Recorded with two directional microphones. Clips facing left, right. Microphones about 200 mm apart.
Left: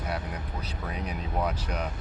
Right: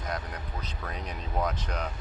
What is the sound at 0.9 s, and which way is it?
Speech, 10° left (ahead or behind).